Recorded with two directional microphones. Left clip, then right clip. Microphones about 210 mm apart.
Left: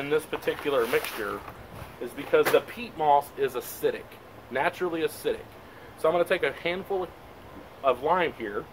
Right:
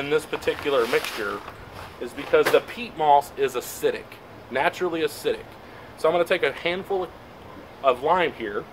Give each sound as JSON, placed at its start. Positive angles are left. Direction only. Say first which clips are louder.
{"t": 0.0, "sound": "speech", "louder": "right 3 dB", "side_deg": -5}